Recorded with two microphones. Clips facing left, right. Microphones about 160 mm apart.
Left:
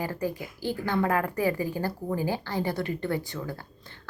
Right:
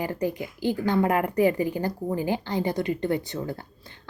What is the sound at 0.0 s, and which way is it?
A woman's voice, 20° right (ahead or behind).